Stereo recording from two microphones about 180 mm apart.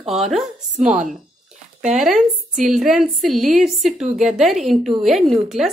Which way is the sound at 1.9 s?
5° right (ahead or behind).